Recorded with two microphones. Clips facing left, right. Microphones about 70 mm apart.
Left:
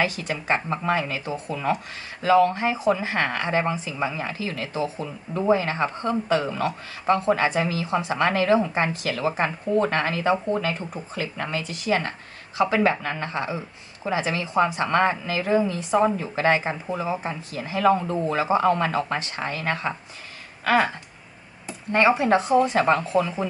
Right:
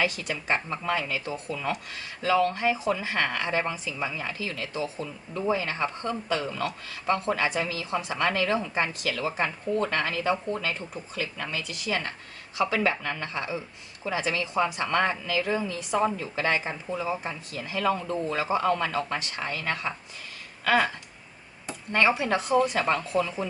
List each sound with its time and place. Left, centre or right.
0.0 s speech: left
21.9 s speech: left
22.8 s speech: left